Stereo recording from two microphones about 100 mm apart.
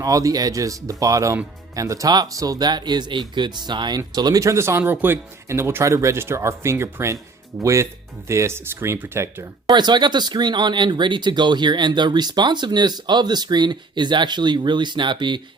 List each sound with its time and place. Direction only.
0.0 s speech: 35° right (ahead or behind)
9.6 s speech: 45° right (ahead or behind)